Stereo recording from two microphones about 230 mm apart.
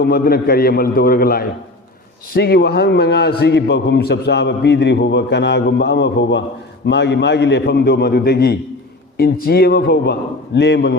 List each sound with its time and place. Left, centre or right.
0.0 s a man's voice: left